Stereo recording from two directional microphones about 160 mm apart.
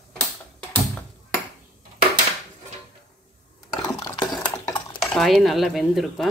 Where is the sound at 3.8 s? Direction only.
20° left (ahead or behind).